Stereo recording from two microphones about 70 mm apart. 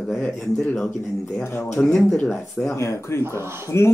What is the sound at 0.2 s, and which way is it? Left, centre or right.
Mantra, centre.